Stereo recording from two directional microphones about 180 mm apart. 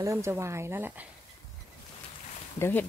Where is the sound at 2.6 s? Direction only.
10° left (ahead or behind).